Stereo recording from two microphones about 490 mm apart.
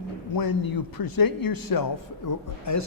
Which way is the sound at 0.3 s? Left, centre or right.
Left.